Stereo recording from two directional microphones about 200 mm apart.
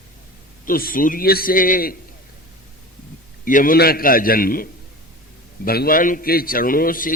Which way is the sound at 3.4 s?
45° left (ahead or behind).